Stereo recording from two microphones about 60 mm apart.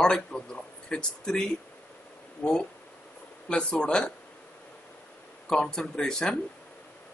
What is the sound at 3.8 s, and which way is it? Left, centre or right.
Speech, centre.